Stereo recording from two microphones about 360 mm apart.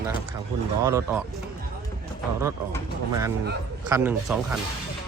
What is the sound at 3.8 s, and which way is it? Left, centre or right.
Speech, centre.